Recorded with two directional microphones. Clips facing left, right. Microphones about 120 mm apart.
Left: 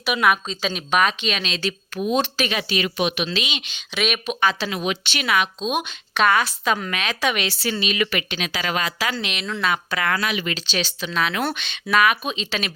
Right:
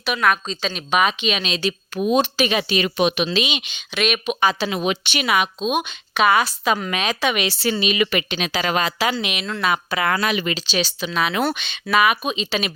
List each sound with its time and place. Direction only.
0.0 s a woman's voice: 10° left (ahead or behind); by 2.5 s 10° right (ahead or behind)
2.5 s a woman's voice: 20° right (ahead or behind)
3.7 s a woman's voice: centre (ahead or behind)
4.4 s a woman's voice: 15° right (ahead or behind)
4.7 s a woman's voice: 25° right (ahead or behind); by 6.9 s 10° right (ahead or behind)
6.9 s a woman's voice: 20° right (ahead or behind)
9.2 s a woman's voice: 10° right (ahead or behind)
10.2 s speech: 35° right (ahead or behind)
10.5 s a woman's voice: 10° right (ahead or behind)